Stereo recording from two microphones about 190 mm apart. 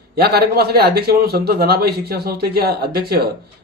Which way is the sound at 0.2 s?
55° right (ahead or behind).